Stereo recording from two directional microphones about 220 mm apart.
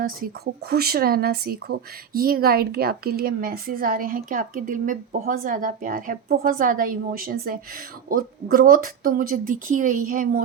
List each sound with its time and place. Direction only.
0.0 s speech: 45° right (ahead or behind)